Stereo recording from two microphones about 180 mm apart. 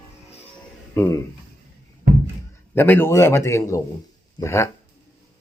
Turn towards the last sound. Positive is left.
turn(degrees=15)  # may be behind; listen again after turning